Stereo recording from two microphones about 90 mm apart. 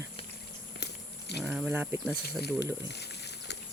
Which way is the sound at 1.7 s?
25° right (ahead or behind).